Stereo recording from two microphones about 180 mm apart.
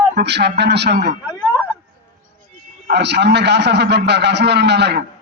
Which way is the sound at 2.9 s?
70° right (ahead or behind).